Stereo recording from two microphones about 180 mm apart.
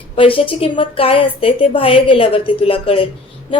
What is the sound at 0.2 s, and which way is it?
A woman's voice, 30° left (ahead or behind).